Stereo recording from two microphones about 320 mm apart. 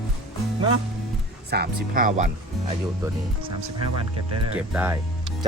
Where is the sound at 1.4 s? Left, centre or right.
Right.